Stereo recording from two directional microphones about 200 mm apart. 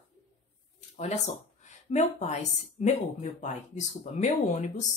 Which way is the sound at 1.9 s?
35° left (ahead or behind).